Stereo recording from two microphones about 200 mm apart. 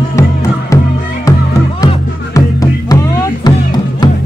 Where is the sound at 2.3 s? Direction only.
15° left (ahead or behind).